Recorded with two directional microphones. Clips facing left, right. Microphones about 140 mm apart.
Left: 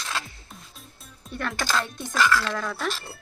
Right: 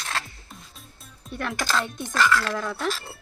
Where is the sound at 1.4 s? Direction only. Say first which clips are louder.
Right 1 dB; 5° right (ahead or behind).